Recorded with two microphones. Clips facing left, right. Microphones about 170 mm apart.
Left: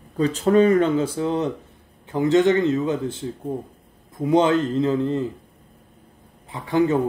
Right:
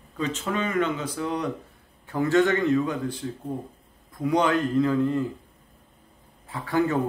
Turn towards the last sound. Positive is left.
turn(degrees=20)  # may be behind; listen again after turning